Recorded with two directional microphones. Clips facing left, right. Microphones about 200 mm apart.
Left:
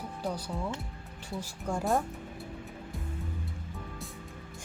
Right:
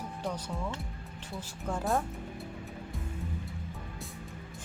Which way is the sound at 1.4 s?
10° left (ahead or behind).